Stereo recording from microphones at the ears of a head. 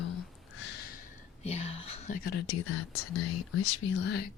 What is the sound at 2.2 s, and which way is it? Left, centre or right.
Speech, left.